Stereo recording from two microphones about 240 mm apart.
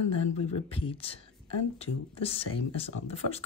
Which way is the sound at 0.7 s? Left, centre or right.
Left.